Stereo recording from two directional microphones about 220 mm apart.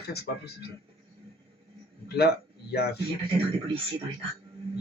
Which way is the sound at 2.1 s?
45° left (ahead or behind).